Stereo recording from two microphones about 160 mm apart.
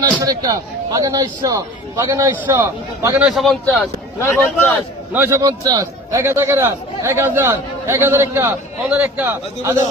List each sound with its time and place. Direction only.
0.2 s a man's voice: 20° right (ahead or behind)
3.2 s speech: centre (ahead or behind)
4.2 s a man's voice: 15° left (ahead or behind)
5.1 s a man's voice: 15° right (ahead or behind)